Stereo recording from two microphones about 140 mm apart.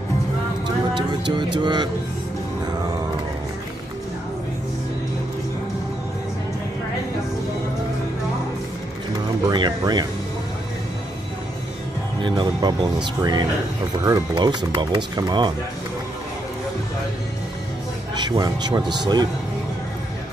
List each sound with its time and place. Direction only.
1.3 s speech: 30° right (ahead or behind)
9.5 s speech: 30° right (ahead or behind)
12.2 s speech: 35° right (ahead or behind)
18.1 s speech: 30° right (ahead or behind)